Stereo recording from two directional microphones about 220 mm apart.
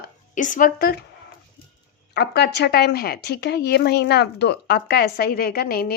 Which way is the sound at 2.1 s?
50° left (ahead or behind).